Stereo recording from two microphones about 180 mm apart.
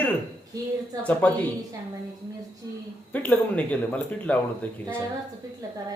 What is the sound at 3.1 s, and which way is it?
Speech, 10° left (ahead or behind).